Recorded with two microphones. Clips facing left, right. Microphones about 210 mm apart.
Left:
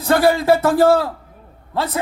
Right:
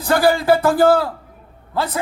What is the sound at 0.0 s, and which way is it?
A man's voice, 25° left (ahead or behind).